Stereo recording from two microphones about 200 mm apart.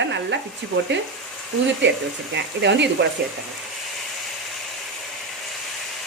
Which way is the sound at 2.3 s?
60° right (ahead or behind).